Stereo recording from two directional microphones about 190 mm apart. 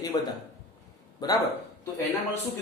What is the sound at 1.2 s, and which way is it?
Speech, 20° left (ahead or behind).